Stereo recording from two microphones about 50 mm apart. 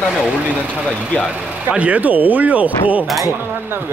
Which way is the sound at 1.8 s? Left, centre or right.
Right.